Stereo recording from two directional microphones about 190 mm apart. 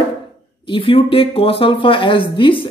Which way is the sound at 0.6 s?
30° left (ahead or behind).